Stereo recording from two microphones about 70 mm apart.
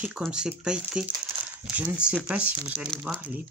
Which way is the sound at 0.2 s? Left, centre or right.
Centre.